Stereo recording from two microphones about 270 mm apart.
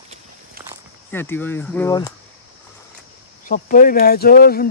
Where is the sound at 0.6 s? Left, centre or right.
Right.